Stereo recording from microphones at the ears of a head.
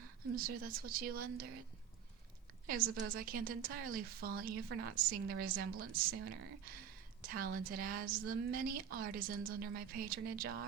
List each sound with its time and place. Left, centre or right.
0.0 s a woman's voice: right
2.6 s a woman's voice: right